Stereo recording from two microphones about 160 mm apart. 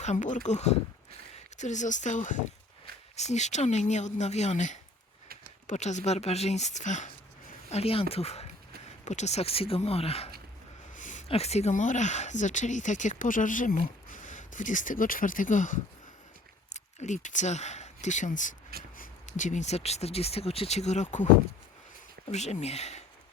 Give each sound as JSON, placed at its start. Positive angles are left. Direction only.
{"t": 0.0, "sound": "speech", "side_deg": 50}
{"t": 7.7, "sound": "speech", "side_deg": 40}
{"t": 10.9, "sound": "a sound", "side_deg": 50}
{"t": 11.3, "sound": "speech", "side_deg": 40}
{"t": 22.3, "sound": "speech", "side_deg": 45}